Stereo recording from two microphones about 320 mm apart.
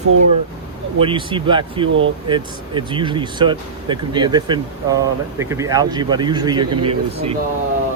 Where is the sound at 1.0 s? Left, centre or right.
Centre.